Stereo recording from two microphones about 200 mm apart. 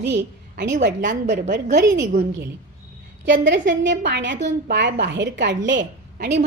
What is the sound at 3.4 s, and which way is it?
A woman's voice, 65° right (ahead or behind).